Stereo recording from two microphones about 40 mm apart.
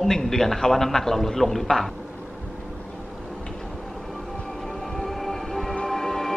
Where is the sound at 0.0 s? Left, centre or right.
Centre.